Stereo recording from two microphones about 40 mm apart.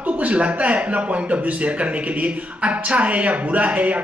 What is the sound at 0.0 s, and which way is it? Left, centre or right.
Speech, right.